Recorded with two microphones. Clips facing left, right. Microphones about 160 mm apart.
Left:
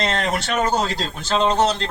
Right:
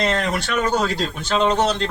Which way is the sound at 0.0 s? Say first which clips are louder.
Right 1 dB; 25° left (ahead or behind).